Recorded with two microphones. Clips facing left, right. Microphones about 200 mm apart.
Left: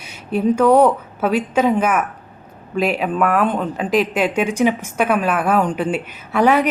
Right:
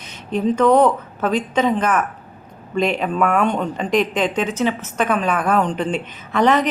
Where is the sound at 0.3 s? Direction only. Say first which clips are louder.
Left 1 dB; 10° left (ahead or behind).